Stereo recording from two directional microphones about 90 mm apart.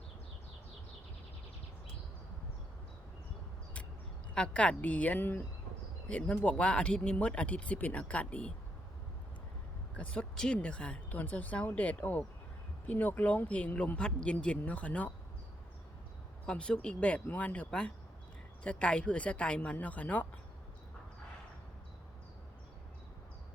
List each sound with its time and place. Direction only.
4.4 s speech: 10° left (ahead or behind)
10.0 s speech: 10° left (ahead or behind)
16.5 s speech: 10° left (ahead or behind)